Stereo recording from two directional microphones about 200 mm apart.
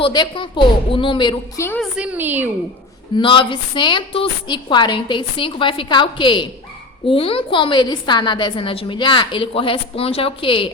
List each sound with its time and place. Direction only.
0.0 s a woman's voice: 25° left (ahead or behind)
1.8 s a woman's voice: 5° right (ahead or behind)
3.2 s a woman's voice: 25° left (ahead or behind)